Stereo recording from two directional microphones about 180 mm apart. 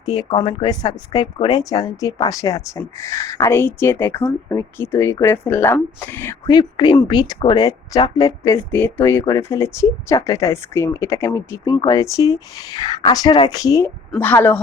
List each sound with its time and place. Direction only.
0.0 s speech: 20° left (ahead or behind)
6.5 s speech: 20° left (ahead or behind)